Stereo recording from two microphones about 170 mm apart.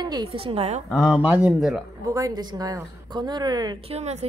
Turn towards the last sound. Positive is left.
turn(degrees=-40)  # may be behind; listen again after turning